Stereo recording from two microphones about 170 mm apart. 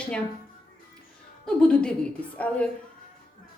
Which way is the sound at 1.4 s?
5° left (ahead or behind).